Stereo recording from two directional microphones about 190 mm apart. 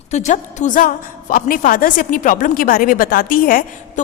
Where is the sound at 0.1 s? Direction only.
40° left (ahead or behind).